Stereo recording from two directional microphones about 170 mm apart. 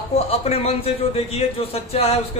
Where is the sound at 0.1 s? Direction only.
35° left (ahead or behind).